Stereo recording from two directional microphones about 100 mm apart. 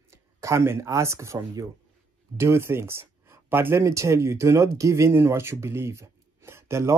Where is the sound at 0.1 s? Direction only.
30° right (ahead or behind).